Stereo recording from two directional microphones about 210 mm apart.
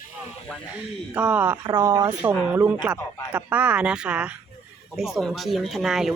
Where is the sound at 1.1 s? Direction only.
5° right (ahead or behind).